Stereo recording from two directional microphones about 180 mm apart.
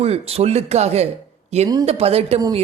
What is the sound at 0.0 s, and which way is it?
A woman's voice, 35° right (ahead or behind).